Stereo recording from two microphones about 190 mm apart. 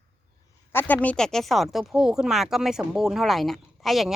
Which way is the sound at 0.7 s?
10° left (ahead or behind).